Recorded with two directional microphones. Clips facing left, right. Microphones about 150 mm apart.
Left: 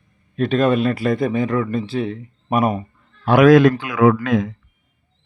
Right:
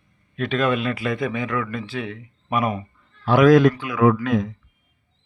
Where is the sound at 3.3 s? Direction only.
65° left (ahead or behind).